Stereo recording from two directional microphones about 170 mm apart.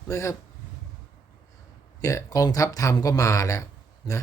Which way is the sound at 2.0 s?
20° left (ahead or behind).